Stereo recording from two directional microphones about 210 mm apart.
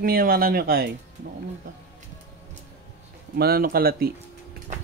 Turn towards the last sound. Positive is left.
turn(degrees=-45)  # may be behind; listen again after turning